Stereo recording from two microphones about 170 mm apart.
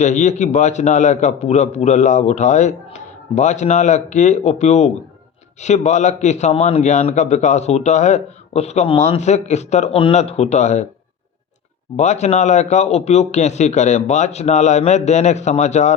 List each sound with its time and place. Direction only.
0.0 s a man's voice: 45° left (ahead or behind)
11.9 s a man's voice: 45° left (ahead or behind)